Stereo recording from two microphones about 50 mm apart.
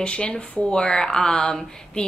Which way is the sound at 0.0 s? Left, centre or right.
Centre.